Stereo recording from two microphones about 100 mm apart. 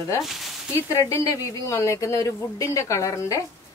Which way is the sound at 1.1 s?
35° left (ahead or behind).